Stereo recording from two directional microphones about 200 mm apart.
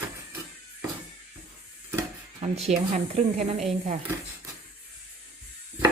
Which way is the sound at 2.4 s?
30° right (ahead or behind).